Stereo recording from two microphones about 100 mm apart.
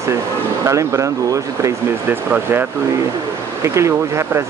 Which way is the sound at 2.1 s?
20° right (ahead or behind).